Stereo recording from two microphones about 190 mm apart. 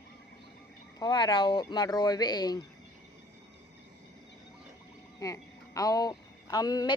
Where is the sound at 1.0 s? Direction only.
20° left (ahead or behind).